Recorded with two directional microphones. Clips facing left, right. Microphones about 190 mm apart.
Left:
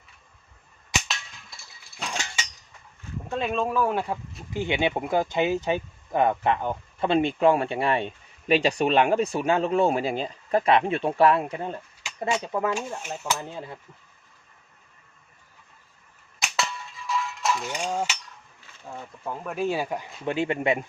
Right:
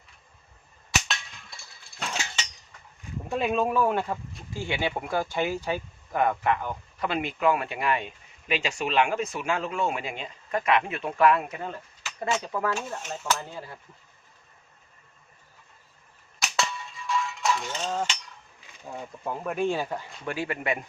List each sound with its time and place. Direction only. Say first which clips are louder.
1.0 s a sound: right 1 dB; centre (ahead or behind)
3.3 s speech: right 1 dB; 5° right (ahead or behind)
3.9 s speech: left 1 dB; 10° left (ahead or behind)
12.7 s speech: left 2 dB; 10° left (ahead or behind)
13.5 s speech: left 3 dB; 20° left (ahead or behind)
16.6 s cowbell: even; centre (ahead or behind)
17.7 s speech: left 2 dB; 10° left (ahead or behind)
18.9 s speech: right 1 dB; 10° right (ahead or behind)
19.5 s speech: left 2 dB; 5° left (ahead or behind); by 20.8 s 25° left (ahead or behind)